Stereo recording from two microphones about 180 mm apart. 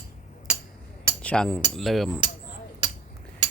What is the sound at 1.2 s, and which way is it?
Speech, 5° left (ahead or behind).